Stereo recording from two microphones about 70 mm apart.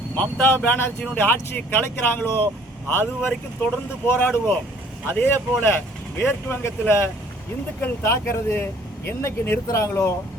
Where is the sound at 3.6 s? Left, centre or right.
Left.